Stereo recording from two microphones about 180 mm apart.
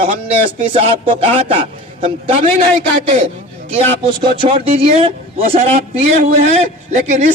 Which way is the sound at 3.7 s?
30° right (ahead or behind).